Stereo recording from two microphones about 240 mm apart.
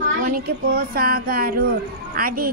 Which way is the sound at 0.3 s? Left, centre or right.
Right.